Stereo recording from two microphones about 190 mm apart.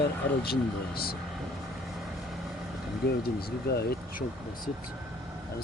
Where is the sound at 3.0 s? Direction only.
55° left (ahead or behind).